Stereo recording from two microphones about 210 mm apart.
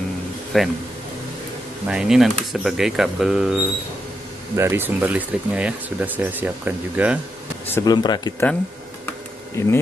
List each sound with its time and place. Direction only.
0.5 s speech: centre (ahead or behind)
1.9 s speech: 5° right (ahead or behind)
7.7 s speech: 20° left (ahead or behind)